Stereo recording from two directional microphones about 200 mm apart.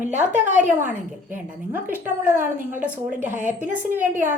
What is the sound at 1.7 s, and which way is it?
A woman's voice, 10° right (ahead or behind).